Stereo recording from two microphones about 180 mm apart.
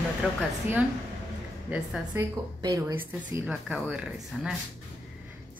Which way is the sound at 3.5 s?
5° right (ahead or behind).